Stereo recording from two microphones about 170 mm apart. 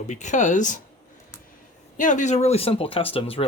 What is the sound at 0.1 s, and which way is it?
Speech, 45° left (ahead or behind).